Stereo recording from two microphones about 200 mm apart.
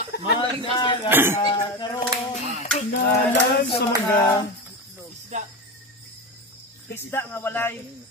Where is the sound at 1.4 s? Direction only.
20° left (ahead or behind).